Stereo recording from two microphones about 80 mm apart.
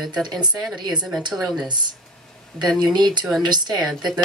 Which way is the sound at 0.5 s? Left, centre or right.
Centre.